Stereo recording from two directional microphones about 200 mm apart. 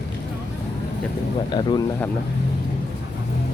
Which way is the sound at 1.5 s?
20° left (ahead or behind).